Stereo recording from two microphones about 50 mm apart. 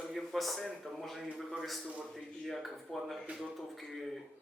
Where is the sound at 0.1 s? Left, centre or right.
Centre.